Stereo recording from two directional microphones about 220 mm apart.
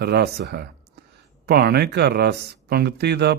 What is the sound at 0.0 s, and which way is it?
Speech, 50° right (ahead or behind).